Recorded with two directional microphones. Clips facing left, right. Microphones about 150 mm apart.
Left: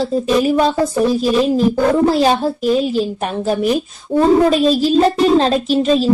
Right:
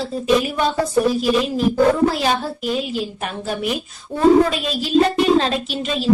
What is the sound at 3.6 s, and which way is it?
A child's voice, 35° left (ahead or behind).